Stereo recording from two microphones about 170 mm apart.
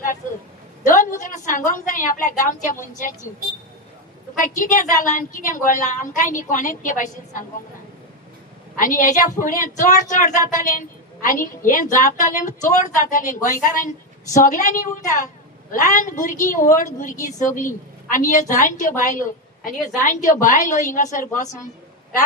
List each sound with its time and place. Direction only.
0.9 s a woman's voice: 50° left (ahead or behind)
4.4 s a woman's voice: 50° left (ahead or behind)
8.8 s a woman's voice: 50° left (ahead or behind)